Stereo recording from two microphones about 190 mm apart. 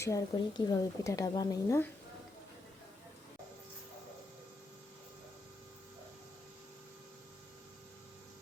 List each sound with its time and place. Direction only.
0.0 s a woman's voice: 20° left (ahead or behind)